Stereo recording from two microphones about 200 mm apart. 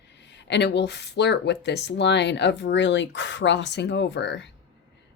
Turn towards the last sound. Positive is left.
turn(degrees=60)  # may be behind; listen again after turning